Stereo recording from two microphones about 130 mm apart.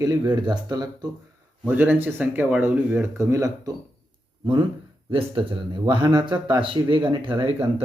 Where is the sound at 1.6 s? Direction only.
15° right (ahead or behind).